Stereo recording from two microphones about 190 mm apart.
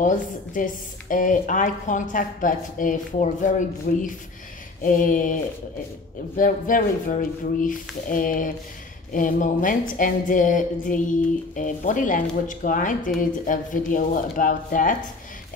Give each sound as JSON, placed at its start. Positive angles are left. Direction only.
{"t": 0.0, "sound": "speech", "side_deg": 45}